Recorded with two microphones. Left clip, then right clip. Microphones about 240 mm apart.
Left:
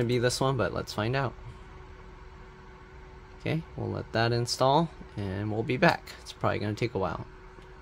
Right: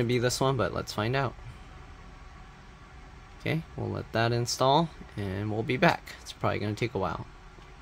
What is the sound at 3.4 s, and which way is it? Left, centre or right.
Speech, centre.